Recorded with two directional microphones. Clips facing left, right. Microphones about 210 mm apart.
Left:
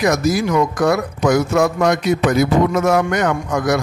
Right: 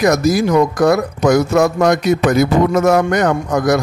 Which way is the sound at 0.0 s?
40° right (ahead or behind).